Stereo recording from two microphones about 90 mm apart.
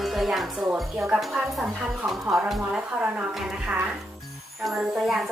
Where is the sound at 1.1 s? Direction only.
Centre (ahead or behind).